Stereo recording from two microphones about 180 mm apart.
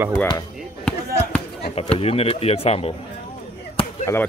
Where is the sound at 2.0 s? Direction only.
35° left (ahead or behind).